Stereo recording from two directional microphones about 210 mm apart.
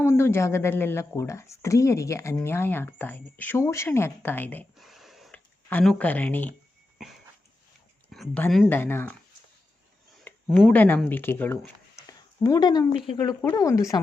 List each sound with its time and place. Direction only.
0.0 s a woman's voice: 10° left (ahead or behind)
4.8 s a sound: centre (ahead or behind)
5.6 s a woman's voice: 5° left (ahead or behind)
8.1 s a woman's voice: 5° left (ahead or behind)
10.5 s a woman's voice: 5° left (ahead or behind)
12.4 s a woman's voice: 20° left (ahead or behind)